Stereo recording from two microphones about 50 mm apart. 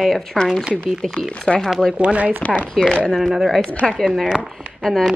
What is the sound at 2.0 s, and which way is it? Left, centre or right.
Speech, right.